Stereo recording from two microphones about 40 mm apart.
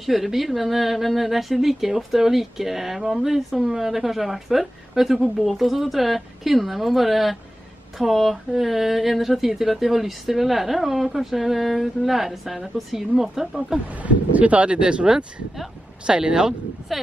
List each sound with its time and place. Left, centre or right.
0.0 s speech: centre
13.8 s speech: right; by 16.5 s centre
16.9 s speech: centre